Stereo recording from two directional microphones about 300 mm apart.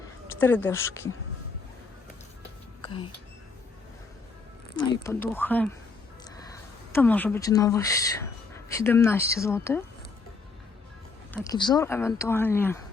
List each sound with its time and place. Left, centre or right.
0.3 s speech: centre
2.8 s speech: centre
5.0 s speech: centre
6.9 s speech: centre
11.4 s speech: centre